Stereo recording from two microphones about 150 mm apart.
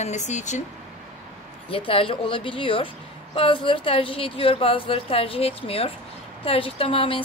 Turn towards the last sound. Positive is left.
turn(degrees=35)  # may be behind; listen again after turning